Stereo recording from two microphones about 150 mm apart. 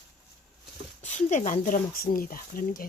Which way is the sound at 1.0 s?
50° left (ahead or behind).